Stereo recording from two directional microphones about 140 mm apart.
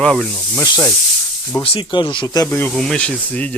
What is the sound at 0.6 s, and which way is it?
Speech, 15° left (ahead or behind).